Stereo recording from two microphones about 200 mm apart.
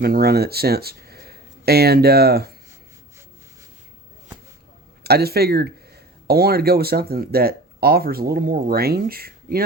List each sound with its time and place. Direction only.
0.0 s speech: 50° right (ahead or behind)
5.0 s speech: 50° right (ahead or behind)